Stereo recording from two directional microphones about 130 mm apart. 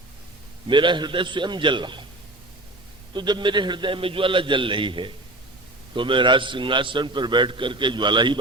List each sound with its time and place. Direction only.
0.7 s a man's voice: 35° right (ahead or behind)
3.1 s a man's voice: 35° right (ahead or behind)